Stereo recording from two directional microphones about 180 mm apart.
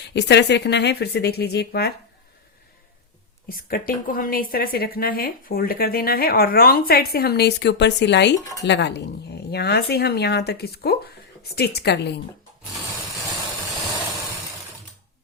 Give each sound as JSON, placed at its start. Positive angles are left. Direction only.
{"t": 0.0, "sound": "speech", "side_deg": 70}
{"t": 3.5, "sound": "a woman's voice", "side_deg": 55}